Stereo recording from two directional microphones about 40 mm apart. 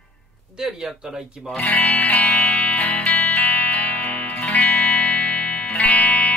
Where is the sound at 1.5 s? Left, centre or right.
Left.